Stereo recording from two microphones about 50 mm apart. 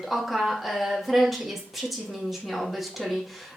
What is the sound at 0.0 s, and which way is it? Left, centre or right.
Speech, centre.